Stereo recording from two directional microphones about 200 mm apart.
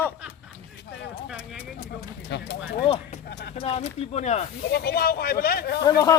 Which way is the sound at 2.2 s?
60° left (ahead or behind).